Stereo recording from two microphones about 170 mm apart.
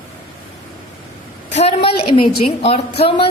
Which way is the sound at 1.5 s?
35° left (ahead or behind).